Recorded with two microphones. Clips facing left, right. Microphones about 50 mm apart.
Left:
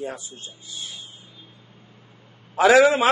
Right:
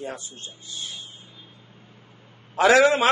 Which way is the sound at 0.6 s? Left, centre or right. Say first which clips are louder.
Right 1 dB; centre.